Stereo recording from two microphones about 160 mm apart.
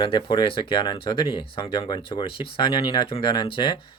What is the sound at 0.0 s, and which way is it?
Speech, 30° left (ahead or behind).